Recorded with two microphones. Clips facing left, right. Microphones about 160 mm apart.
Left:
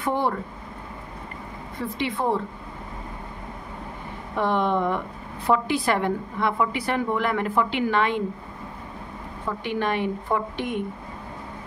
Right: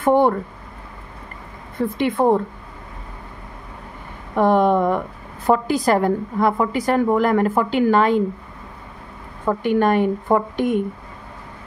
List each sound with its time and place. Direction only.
0.0 s speech: 50° right (ahead or behind)
2.0 s speech: 50° right (ahead or behind)
4.4 s a woman's voice: 45° right (ahead or behind)
9.5 s speech: 50° right (ahead or behind)